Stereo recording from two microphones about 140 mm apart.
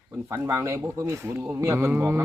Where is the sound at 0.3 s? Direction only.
20° right (ahead or behind).